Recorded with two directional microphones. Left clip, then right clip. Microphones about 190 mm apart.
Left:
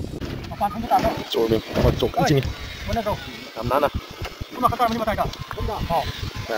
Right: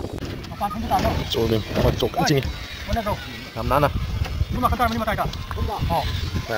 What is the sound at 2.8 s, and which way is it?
Speech, 60° left (ahead or behind).